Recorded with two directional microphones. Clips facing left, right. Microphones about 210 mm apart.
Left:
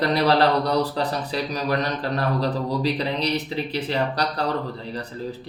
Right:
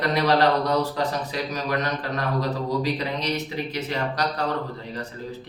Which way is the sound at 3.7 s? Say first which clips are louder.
Left 5 dB; 30° left (ahead or behind).